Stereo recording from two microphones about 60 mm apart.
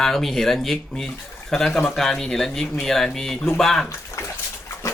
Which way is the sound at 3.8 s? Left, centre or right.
Left.